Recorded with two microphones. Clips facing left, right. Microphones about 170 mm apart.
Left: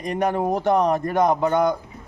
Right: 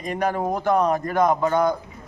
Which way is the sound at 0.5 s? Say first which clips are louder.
Even; 25° left (ahead or behind).